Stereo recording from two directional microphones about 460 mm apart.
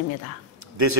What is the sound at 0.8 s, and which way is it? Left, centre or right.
Speech, right.